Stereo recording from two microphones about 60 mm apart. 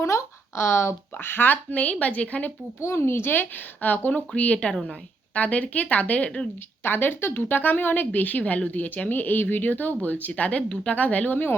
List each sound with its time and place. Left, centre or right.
0.0 s a sound: left
1.7 s speech: left
2.8 s a woman's voice: left
6.8 s speech: left